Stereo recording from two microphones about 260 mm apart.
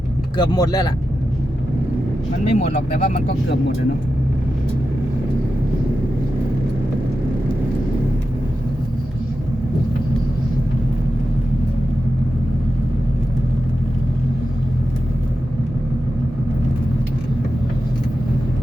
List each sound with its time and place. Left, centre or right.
0.3 s speech: centre
2.4 s speech: left